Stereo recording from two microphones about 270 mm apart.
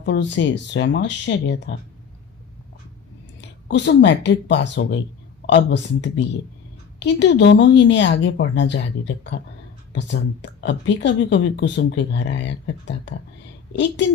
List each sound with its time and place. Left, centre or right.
0.0 s speech: left
3.7 s speech: left